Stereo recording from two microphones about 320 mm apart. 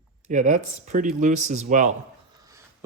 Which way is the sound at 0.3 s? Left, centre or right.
Right.